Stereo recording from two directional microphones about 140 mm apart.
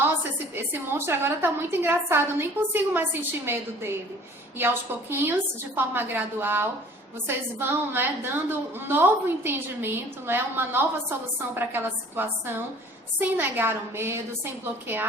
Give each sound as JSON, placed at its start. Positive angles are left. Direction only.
{"t": 0.0, "sound": "a woman's voice", "side_deg": -15}
{"t": 5.7, "sound": "a woman's voice", "side_deg": -15}